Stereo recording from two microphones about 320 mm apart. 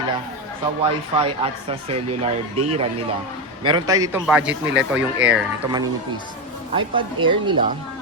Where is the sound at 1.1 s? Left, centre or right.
Centre.